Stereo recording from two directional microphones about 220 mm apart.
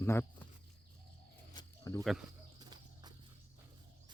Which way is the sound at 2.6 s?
20° right (ahead or behind).